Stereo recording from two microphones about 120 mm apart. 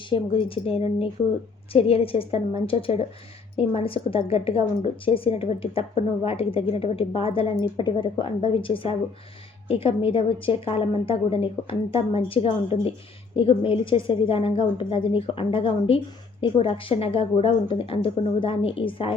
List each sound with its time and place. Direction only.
0.1 s a woman's voice: 50° left (ahead or behind)